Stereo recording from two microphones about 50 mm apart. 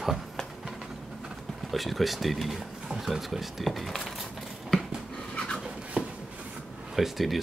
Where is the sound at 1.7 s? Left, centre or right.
Centre.